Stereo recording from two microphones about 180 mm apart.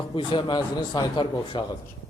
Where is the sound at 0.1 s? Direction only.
30° left (ahead or behind).